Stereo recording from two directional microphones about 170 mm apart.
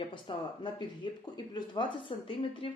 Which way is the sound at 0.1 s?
25° left (ahead or behind).